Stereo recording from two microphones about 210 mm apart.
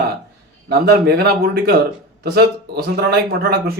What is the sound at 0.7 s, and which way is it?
Speech, 50° right (ahead or behind).